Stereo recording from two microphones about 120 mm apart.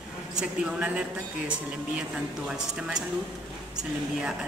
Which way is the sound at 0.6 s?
10° right (ahead or behind).